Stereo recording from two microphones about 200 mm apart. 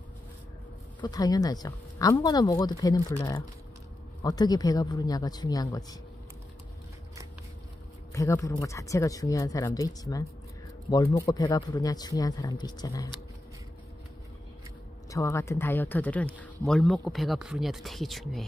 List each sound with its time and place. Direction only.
1.0 s speech: 20° left (ahead or behind)
8.1 s speech: 15° left (ahead or behind)
15.0 s speech: 15° left (ahead or behind)